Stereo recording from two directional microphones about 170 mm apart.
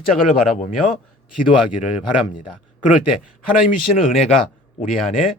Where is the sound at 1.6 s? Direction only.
5° right (ahead or behind).